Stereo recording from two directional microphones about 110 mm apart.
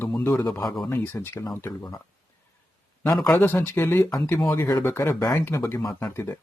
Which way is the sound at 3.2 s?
15° left (ahead or behind).